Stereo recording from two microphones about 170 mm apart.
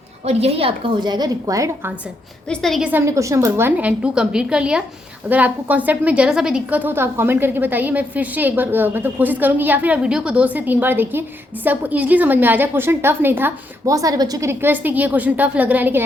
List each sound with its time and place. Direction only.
0.3 s a woman's voice: 35° right (ahead or behind); by 1.9 s 20° right (ahead or behind)
2.5 s a woman's voice: centre (ahead or behind)
2.9 s a woman's voice: 15° right (ahead or behind)